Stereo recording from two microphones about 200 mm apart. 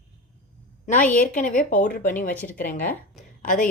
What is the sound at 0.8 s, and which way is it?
A woman's voice, 40° left (ahead or behind).